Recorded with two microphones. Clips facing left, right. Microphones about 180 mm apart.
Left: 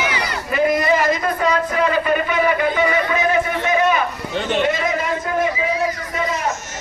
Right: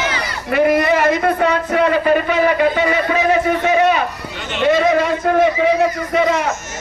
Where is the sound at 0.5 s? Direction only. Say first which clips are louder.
Right 3 dB; 65° right (ahead or behind).